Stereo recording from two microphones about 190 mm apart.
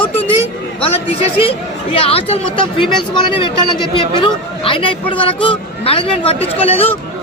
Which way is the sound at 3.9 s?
25° left (ahead or behind).